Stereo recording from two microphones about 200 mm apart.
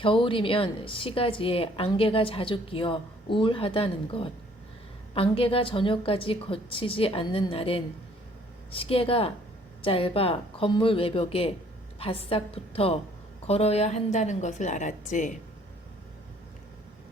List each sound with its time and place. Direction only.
0.0 s a woman's voice: 25° left (ahead or behind)